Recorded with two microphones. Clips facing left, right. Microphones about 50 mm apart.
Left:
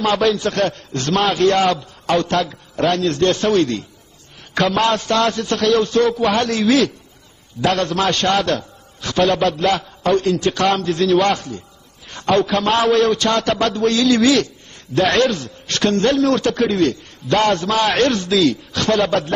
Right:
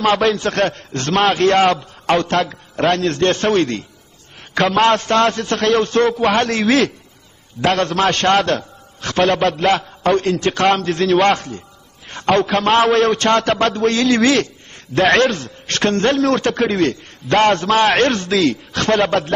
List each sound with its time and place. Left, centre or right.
0.0 s a man's voice: right
12.1 s a sound: right
12.4 s a man's voice: right